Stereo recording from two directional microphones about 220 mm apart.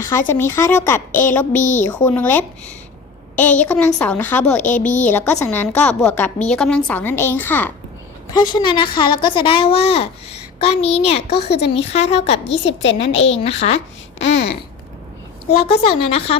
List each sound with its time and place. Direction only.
0.0 s a woman's voice: 10° left (ahead or behind)
1.5 s a woman's voice: 35° left (ahead or behind)
2.0 s a woman's voice: 10° left (ahead or behind)
3.6 s a woman's voice: 5° left (ahead or behind)
4.6 s a woman's voice: 35° left (ahead or behind)
5.0 s a woman's voice: 10° left (ahead or behind); by 11.2 s 25° left (ahead or behind)
11.3 s speech: 50° left (ahead or behind)
11.7 s a woman's voice: 30° left (ahead or behind)
12.5 s a woman's voice: 55° left (ahead or behind)
13.3 s a woman's voice: 30° left (ahead or behind)
14.2 s babbling: 55° left (ahead or behind)
15.4 s a woman's voice: 25° left (ahead or behind)